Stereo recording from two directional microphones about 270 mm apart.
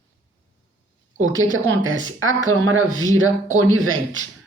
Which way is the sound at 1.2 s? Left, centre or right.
Right.